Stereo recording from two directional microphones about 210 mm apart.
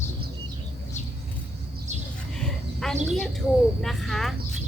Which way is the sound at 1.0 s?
35° left (ahead or behind).